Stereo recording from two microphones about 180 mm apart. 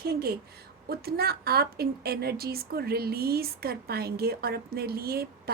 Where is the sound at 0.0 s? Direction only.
60° right (ahead or behind).